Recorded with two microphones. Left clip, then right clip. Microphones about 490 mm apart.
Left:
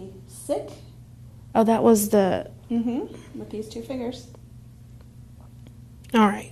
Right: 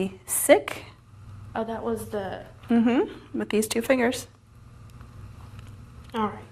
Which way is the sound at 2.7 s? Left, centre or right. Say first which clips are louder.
Right 6 dB; right.